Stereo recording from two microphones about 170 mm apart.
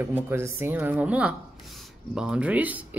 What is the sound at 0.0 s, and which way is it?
Speech, 10° right (ahead or behind).